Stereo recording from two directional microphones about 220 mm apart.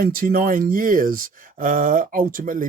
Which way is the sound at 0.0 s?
40° right (ahead or behind).